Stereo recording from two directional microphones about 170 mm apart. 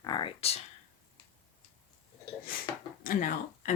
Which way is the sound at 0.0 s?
25° left (ahead or behind).